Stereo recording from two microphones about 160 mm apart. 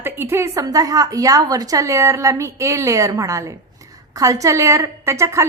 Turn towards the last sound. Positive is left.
turn(degrees=-15)  # may be behind; listen again after turning